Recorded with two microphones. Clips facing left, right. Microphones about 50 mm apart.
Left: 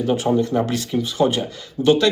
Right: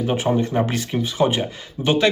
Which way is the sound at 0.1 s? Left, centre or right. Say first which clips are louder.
Left 3 dB; right.